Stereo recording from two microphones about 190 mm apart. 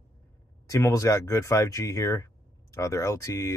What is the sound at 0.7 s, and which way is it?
Speech, 15° left (ahead or behind).